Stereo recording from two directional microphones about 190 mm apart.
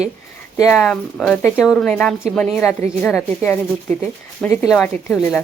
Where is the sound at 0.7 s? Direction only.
5° left (ahead or behind).